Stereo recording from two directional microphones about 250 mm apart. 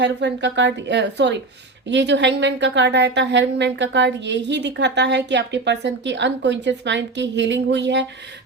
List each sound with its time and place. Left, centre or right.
0.0 s a woman's voice: right